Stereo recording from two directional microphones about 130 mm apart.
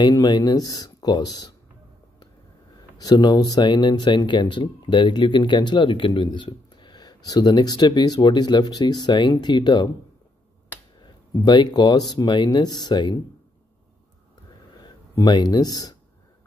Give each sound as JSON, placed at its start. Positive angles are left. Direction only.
{"t": 0.0, "sound": "speech", "side_deg": 30}
{"t": 3.0, "sound": "speech", "side_deg": 30}
{"t": 11.3, "sound": "speech", "side_deg": 35}
{"t": 14.8, "sound": "speech", "side_deg": 30}